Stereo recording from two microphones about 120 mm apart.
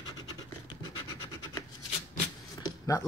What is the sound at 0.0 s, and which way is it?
Scratch, 35° left (ahead or behind).